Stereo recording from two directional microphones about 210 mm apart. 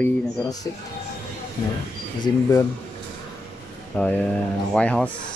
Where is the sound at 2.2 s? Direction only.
15° left (ahead or behind).